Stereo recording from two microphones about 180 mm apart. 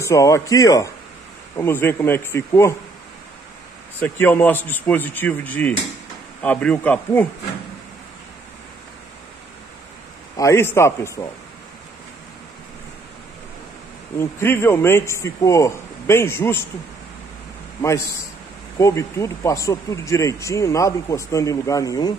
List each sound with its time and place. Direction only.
0.0 s speech: 15° left (ahead or behind)
4.0 s speech: 10° left (ahead or behind)
10.3 s speech: 15° left (ahead or behind)
14.1 s speech: 15° left (ahead or behind)
18.8 s speech: 15° left (ahead or behind)